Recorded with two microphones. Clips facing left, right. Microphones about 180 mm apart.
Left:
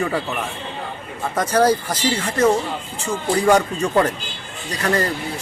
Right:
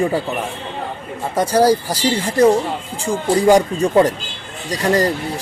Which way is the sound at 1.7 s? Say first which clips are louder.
Right 3 dB; 35° right (ahead or behind).